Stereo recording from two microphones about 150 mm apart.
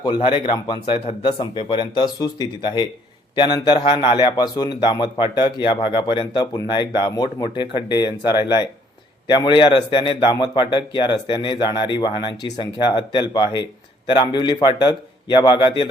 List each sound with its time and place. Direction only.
0.0 s a man's voice: 35° left (ahead or behind)